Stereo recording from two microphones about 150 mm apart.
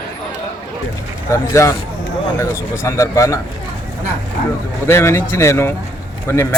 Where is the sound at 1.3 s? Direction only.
20° left (ahead or behind).